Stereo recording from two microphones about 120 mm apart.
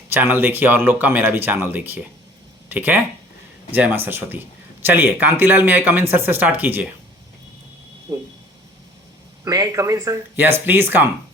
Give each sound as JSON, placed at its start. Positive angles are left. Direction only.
{"t": 0.1, "sound": "speech", "side_deg": -15}
{"t": 9.4, "sound": "speech", "side_deg": -30}